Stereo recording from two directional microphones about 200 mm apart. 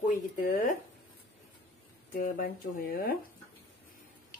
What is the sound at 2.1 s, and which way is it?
Speech, 45° left (ahead or behind).